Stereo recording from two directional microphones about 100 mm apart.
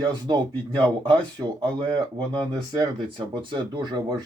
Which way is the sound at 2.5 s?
45° right (ahead or behind).